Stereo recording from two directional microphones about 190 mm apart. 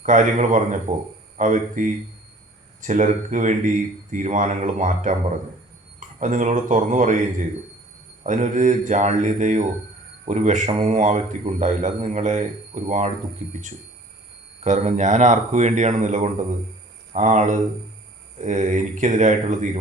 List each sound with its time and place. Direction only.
0.0 s a man's voice: 40° right (ahead or behind)